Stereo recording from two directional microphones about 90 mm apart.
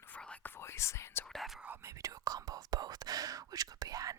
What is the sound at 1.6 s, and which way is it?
Whispering, 20° right (ahead or behind).